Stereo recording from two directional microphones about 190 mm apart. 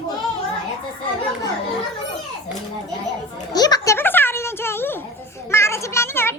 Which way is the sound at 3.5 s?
20° left (ahead or behind).